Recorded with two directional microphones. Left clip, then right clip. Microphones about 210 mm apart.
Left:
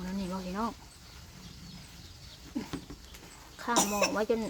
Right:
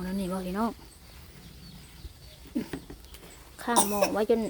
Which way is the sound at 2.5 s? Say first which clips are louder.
Right 5 dB; 30° right (ahead or behind).